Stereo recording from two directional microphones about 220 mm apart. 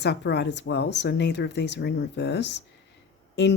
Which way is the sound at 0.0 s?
50° left (ahead or behind).